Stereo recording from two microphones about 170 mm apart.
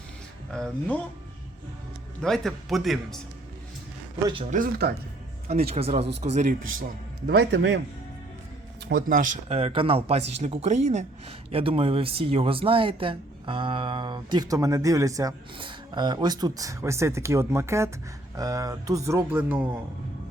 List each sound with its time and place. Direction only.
0.5 s speech: 5° left (ahead or behind)
2.2 s speech: centre (ahead or behind)
4.5 s speech: 60° right (ahead or behind)
5.6 s speech: 35° right (ahead or behind)
7.3 s a man's voice: 80° right
8.9 s speech: 60° right (ahead or behind)
9.5 s speech: 35° right (ahead or behind); by 19.8 s 10° right (ahead or behind)